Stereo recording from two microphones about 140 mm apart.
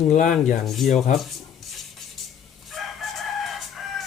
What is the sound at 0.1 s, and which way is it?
Speech, 60° left (ahead or behind).